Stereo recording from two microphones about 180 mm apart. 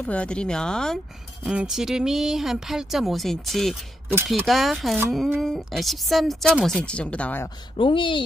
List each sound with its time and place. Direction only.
0.0 s a woman's voice: 5° left (ahead or behind)
7.7 s speech: 30° left (ahead or behind)